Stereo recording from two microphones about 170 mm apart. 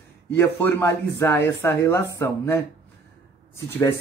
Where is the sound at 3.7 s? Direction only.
15° left (ahead or behind).